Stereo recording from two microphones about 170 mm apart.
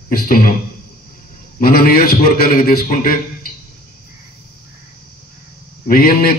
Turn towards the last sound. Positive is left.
turn(degrees=60)  # may be behind; listen again after turning